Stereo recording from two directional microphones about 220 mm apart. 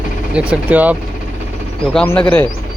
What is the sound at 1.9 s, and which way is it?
Speech, 10° left (ahead or behind).